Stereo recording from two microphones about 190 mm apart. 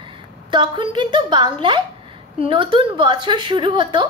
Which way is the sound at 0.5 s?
25° right (ahead or behind).